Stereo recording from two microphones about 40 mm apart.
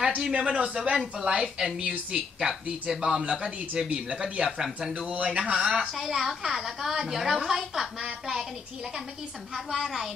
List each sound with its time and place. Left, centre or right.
0.2 s a woman's voice: right
4.5 s a woman's voice: centre
5.0 s speech: right
5.6 s a woman's voice: centre
5.9 s a woman's voice: centre
9.7 s a woman's voice: centre